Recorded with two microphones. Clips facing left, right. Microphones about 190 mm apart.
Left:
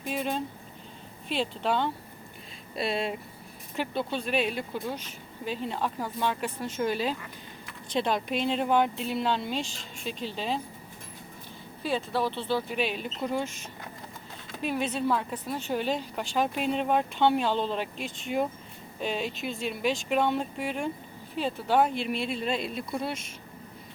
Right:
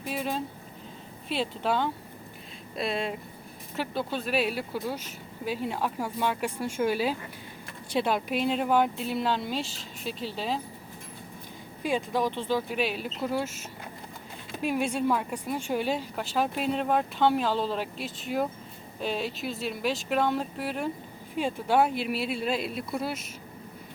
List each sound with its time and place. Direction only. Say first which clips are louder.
0.0 s a woman's voice: left 1 dB; 5° right (ahead or behind)
11.8 s a woman's voice: right 1 dB; 15° right (ahead or behind)